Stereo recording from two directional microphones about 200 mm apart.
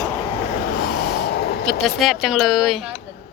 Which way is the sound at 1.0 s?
50° left (ahead or behind).